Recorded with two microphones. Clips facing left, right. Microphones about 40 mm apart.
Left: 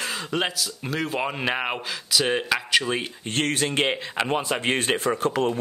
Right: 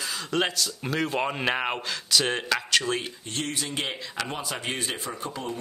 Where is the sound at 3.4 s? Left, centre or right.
Left.